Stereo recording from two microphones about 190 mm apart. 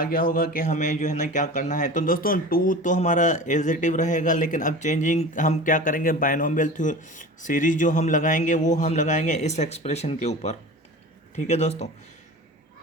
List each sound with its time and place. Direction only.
0.0 s a man's voice: 45° left (ahead or behind)